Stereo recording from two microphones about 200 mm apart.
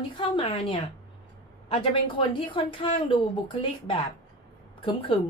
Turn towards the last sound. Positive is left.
turn(degrees=25)  # may be behind; listen again after turning